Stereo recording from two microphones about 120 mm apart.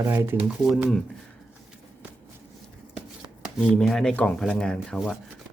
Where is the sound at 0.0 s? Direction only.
25° right (ahead or behind).